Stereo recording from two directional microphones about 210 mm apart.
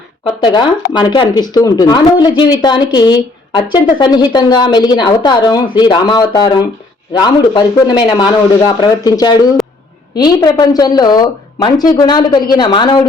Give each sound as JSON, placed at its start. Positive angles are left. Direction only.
{"t": 0.4, "sound": "speech", "side_deg": 20}